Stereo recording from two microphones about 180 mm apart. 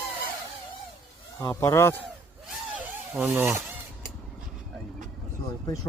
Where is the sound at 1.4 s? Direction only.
15° left (ahead or behind).